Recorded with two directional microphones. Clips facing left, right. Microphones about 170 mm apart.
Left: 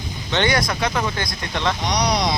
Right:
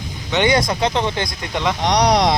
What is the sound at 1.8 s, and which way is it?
Speech, 90° right.